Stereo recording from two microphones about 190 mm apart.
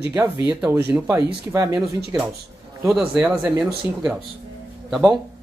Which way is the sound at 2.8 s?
5° right (ahead or behind).